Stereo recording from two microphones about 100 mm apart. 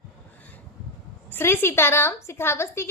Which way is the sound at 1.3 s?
20° left (ahead or behind).